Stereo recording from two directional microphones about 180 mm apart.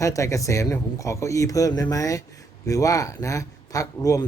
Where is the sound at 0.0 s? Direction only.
15° left (ahead or behind).